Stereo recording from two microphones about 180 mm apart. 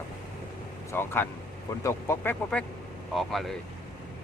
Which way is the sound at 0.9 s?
10° left (ahead or behind).